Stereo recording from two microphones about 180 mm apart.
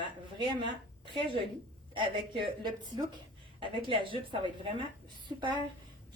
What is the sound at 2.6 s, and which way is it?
Speech, 25° right (ahead or behind).